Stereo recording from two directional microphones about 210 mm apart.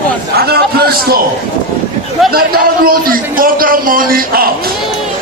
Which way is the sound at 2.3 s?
45° right (ahead or behind).